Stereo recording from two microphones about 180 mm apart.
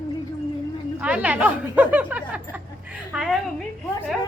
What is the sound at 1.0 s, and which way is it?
A woman's voice, 5° right (ahead or behind).